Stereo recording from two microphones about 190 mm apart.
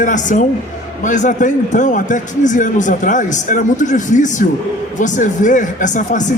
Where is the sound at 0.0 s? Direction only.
40° left (ahead or behind).